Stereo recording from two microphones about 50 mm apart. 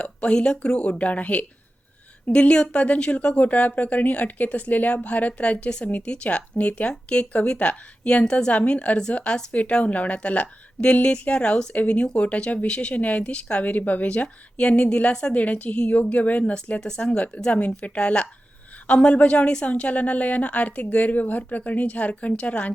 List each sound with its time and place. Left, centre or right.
0.0 s speech: left
16.8 s speech: centre